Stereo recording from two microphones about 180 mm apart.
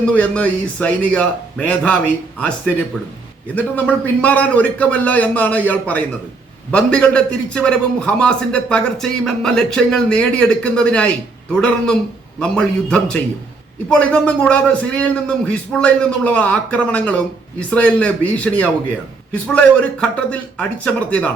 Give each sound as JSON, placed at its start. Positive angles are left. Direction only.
{"t": 0.0, "sound": "a man's voice", "side_deg": 10}
{"t": 3.5, "sound": "a man's voice", "side_deg": 10}